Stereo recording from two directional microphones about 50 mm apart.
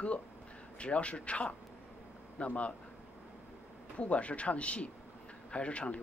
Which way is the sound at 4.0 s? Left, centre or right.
Left.